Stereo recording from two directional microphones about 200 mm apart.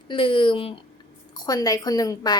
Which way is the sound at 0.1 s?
25° left (ahead or behind).